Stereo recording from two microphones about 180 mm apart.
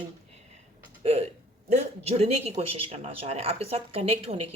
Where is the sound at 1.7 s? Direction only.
35° right (ahead or behind).